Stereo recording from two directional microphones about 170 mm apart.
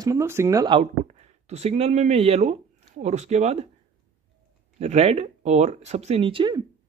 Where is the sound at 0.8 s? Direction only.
40° right (ahead or behind).